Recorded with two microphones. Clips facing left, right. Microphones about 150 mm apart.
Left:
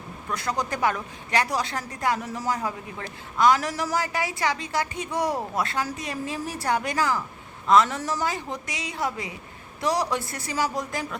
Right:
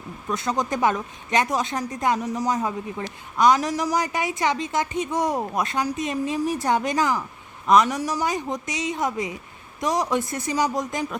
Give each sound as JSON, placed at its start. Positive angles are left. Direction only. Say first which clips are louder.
{"t": 0.3, "sound": "a woman's voice", "louder": "right 3 dB", "side_deg": -20}